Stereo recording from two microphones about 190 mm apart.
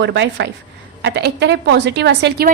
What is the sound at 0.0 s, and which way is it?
A woman's voice, 70° right (ahead or behind).